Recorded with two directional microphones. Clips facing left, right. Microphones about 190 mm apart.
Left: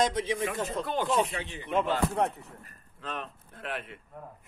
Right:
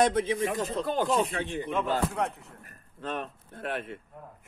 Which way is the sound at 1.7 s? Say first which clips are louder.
Left 3 dB; 35° left (ahead or behind).